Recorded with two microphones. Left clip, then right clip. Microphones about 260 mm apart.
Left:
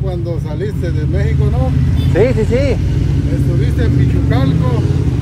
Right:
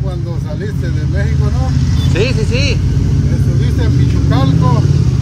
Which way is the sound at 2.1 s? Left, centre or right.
Centre.